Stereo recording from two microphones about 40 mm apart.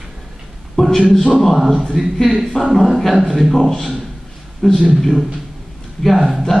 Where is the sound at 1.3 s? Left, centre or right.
Centre.